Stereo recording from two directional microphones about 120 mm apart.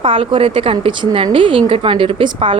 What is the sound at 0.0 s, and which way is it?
A woman's voice, 45° right (ahead or behind).